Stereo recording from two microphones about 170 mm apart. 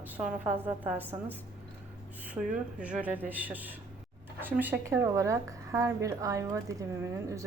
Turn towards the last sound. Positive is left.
turn(degrees=-20)  # may be behind; listen again after turning